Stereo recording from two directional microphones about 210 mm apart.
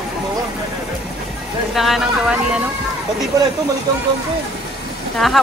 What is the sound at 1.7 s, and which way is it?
Speech, centre (ahead or behind).